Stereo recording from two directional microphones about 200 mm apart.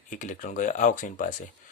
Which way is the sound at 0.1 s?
40° left (ahead or behind).